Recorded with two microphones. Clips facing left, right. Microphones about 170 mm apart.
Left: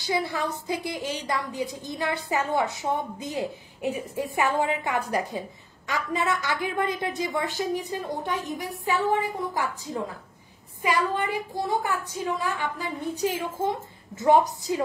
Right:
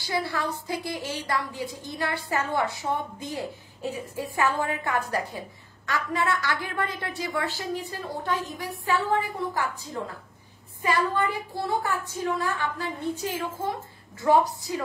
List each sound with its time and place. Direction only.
0.0 s a woman's voice: 20° left (ahead or behind)
10.8 s a woman's voice: 15° left (ahead or behind)